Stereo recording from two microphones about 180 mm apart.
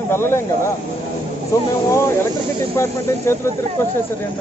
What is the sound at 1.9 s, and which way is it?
A man's voice, 15° left (ahead or behind).